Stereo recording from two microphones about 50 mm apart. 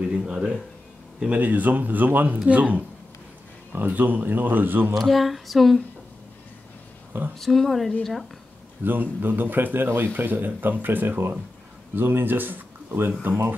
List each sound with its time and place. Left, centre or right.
0.1 s speech: centre
1.3 s speech: right
2.3 s speech: right
4.9 s a sound: centre
7.3 s a sound: centre
8.8 s speech: right